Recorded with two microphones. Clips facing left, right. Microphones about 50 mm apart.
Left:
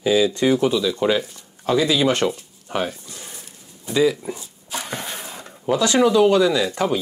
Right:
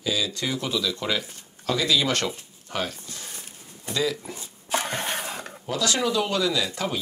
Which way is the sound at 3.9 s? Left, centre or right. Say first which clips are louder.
Left 8 dB; centre.